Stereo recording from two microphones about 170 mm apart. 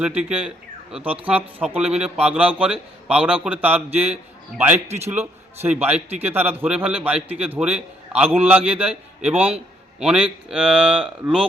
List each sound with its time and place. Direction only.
0.0 s a man's voice: 5° right (ahead or behind)
4.9 s a man's voice: 40° right (ahead or behind)
5.7 s a man's voice: 10° right (ahead or behind)